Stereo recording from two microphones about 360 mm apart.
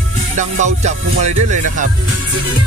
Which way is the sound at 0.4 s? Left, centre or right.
Centre.